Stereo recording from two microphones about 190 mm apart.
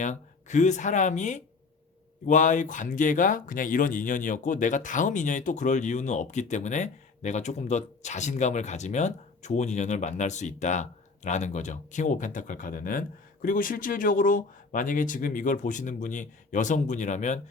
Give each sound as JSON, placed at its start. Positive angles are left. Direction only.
{"t": 0.0, "sound": "speech", "side_deg": 40}